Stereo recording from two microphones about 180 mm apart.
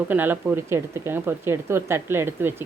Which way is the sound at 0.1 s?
10° right (ahead or behind).